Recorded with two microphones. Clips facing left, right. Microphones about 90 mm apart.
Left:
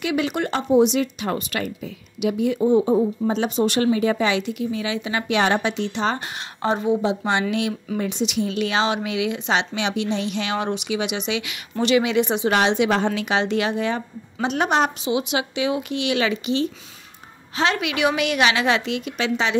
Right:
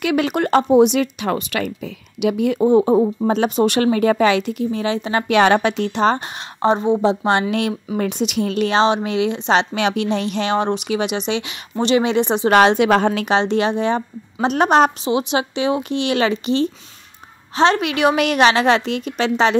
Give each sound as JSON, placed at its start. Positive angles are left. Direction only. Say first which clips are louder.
{"t": 0.0, "sound": "speech", "louder": "right 4 dB", "side_deg": -60}
{"t": 2.1, "sound": "speech", "louder": "right 3 dB", "side_deg": -70}
{"t": 5.3, "sound": "speech", "louder": "right 6 dB", "side_deg": -65}
{"t": 6.1, "sound": "speech", "louder": "right 3 dB", "side_deg": -30}
{"t": 8.0, "sound": "a woman's voice", "louder": "right 3 dB", "side_deg": -50}
{"t": 8.6, "sound": "a woman's voice", "louder": "right 8 dB", "side_deg": -30}
{"t": 12.4, "sound": "a woman's voice", "louder": "right 9 dB", "side_deg": -50}
{"t": 13.3, "sound": "a woman's voice", "louder": "right 4 dB", "side_deg": -30}